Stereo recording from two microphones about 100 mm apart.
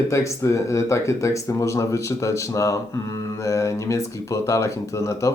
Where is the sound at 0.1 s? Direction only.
30° left (ahead or behind).